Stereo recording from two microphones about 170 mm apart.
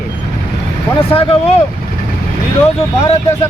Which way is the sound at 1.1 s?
35° left (ahead or behind).